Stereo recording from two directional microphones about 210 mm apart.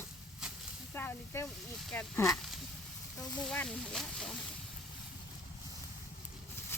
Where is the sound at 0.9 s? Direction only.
10° left (ahead or behind).